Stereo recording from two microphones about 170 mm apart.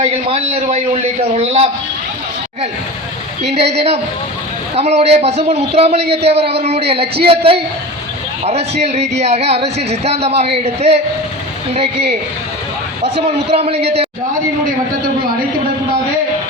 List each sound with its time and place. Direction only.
0.0 s a man's voice: 35° right (ahead or behind)
3.5 s a man's voice: 35° right (ahead or behind)
13.2 s a man's voice: 35° right (ahead or behind)